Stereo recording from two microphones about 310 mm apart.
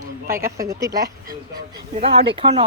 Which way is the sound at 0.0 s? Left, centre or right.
Centre.